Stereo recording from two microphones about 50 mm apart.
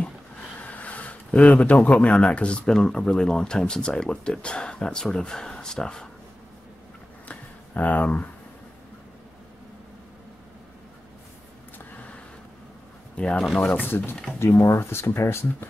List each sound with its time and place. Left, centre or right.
0.6 s a sound: left
2.0 s speech: left
7.2 s a sound: left
13.1 s speech: left
13.8 s speech: left
14.4 s speech: left